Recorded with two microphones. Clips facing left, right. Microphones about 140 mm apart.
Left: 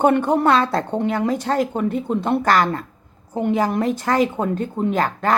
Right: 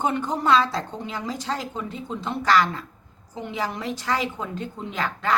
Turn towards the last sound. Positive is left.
turn(degrees=50)  # may be behind; listen again after turning